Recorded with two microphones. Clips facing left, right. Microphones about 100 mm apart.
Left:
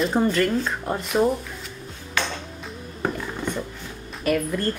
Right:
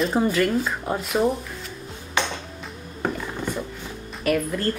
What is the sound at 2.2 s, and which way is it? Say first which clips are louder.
Ping: right 2 dB; 20° right (ahead or behind).